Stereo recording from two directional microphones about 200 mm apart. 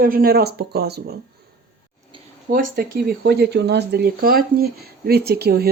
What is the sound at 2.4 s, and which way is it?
Speech, 45° right (ahead or behind).